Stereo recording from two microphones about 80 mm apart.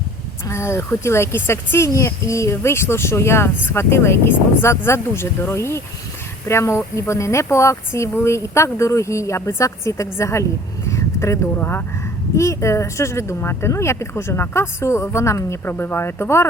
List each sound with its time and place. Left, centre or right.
0.4 s speech: left
10.8 s a sound: left
12.4 s speech: left